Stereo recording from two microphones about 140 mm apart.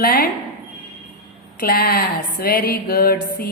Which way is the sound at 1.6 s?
90° left.